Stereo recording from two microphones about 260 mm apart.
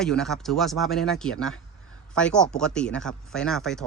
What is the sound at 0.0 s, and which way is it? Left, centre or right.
Speech, centre.